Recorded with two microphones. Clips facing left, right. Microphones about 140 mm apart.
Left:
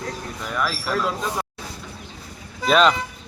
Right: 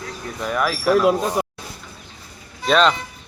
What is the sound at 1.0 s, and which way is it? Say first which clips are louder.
Speech: right 7 dB; 65° right (ahead or behind).